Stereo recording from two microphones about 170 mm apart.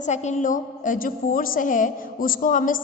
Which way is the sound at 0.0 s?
45° left (ahead or behind).